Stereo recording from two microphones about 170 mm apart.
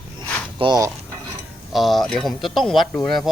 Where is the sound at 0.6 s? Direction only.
25° right (ahead or behind).